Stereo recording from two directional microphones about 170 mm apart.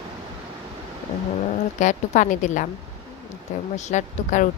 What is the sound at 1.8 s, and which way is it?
Speech, 45° left (ahead or behind).